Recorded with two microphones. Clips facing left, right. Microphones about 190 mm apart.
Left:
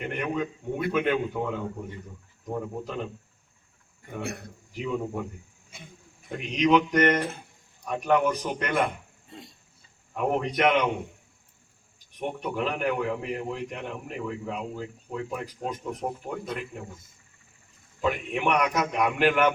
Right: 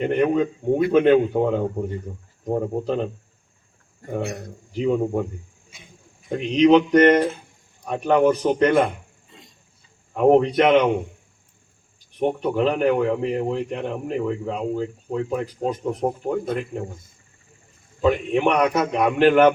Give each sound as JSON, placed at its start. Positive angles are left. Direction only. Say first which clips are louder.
{"t": 0.0, "sound": "a man's voice", "louder": "right 10 dB", "side_deg": -35}
{"t": 4.0, "sound": "a man's voice", "louder": "right 8 dB", "side_deg": -50}
{"t": 4.9, "sound": "a man's voice", "louder": "right 9 dB", "side_deg": -40}
{"t": 6.3, "sound": "a man's voice", "louder": "right 7 dB", "side_deg": -30}
{"t": 10.2, "sound": "a man's voice", "louder": "right 10 dB", "side_deg": -35}
{"t": 12.2, "sound": "a man's voice", "louder": "right 9 dB", "side_deg": -35}
{"t": 18.0, "sound": "a man's voice", "louder": "right 8 dB", "side_deg": -35}